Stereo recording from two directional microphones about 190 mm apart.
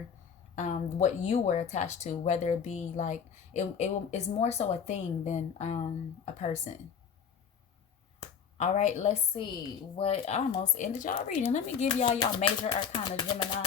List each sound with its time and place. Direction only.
0.5 s speech: 40° left (ahead or behind)
8.5 s speech: 40° left (ahead or behind)
12.6 s speech: 20° left (ahead or behind)